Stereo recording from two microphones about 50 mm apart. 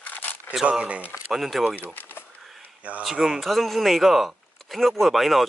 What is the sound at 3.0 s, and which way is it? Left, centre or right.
Speech, centre.